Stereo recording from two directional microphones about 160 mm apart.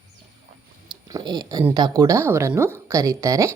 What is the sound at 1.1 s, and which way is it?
A woman's voice, 25° right (ahead or behind).